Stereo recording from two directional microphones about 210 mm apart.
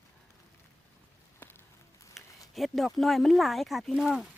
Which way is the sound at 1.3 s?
10° left (ahead or behind).